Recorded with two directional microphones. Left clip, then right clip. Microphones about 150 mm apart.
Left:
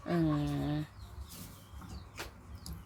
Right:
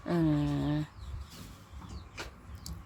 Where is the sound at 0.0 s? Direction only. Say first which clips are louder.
Right 3 dB; 10° right (ahead or behind).